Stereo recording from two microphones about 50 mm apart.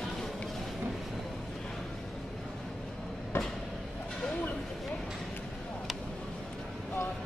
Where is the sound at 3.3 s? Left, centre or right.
Left.